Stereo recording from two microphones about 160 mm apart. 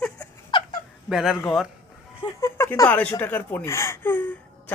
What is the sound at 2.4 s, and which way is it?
Speech, 15° left (ahead or behind).